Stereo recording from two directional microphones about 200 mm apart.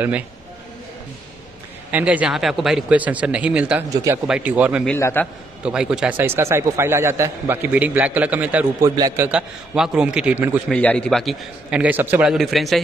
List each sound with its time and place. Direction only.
1.9 s a man's voice: 5° right (ahead or behind)
4.8 s a man's voice: 10° left (ahead or behind)
5.6 s a man's voice: 5° right (ahead or behind)
10.7 s a man's voice: 5° left (ahead or behind)